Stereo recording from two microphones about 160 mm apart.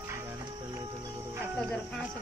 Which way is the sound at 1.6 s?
5° left (ahead or behind).